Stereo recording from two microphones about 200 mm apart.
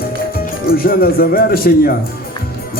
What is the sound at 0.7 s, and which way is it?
Speech, 50° left (ahead or behind).